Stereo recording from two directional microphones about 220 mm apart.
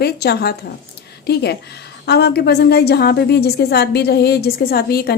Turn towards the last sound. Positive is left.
turn(degrees=45)  # may be behind; listen again after turning